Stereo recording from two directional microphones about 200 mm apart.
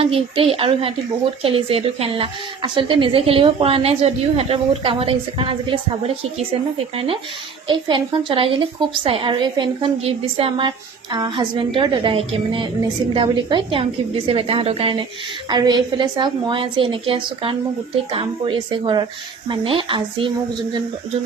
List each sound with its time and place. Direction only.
0.0 s speech: 30° right (ahead or behind)